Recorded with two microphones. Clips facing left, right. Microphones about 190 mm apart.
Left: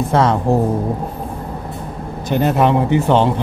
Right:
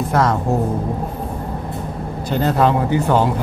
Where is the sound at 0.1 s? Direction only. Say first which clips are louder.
Left 2 dB; 25° left (ahead or behind).